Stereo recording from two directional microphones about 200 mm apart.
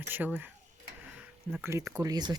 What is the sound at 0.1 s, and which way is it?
Speech, 10° right (ahead or behind).